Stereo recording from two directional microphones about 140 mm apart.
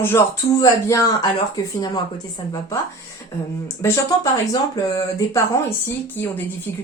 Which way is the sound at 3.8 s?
25° left (ahead or behind).